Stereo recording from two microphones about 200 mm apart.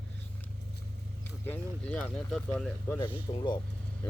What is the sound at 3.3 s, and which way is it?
Speech, 25° left (ahead or behind).